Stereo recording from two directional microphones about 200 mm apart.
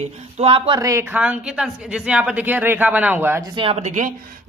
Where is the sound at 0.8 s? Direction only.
15° right (ahead or behind).